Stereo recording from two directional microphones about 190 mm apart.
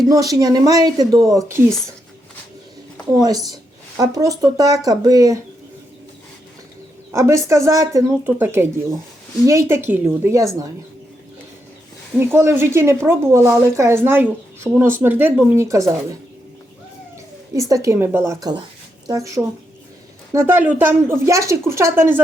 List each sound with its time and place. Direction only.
0.1 s speech: 20° right (ahead or behind)
3.2 s speech: 20° right (ahead or behind)
7.1 s a woman's voice: 15° right (ahead or behind)
12.3 s a woman's voice: 15° right (ahead or behind)
17.5 s a woman's voice: 15° right (ahead or behind)